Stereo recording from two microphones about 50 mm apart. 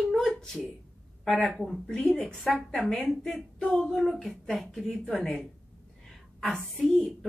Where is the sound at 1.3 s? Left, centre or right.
Centre.